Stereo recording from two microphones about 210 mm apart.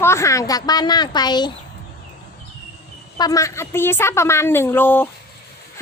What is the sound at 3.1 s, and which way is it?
Speech, 15° left (ahead or behind).